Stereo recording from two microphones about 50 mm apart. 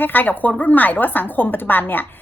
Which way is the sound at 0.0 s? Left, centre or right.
Left.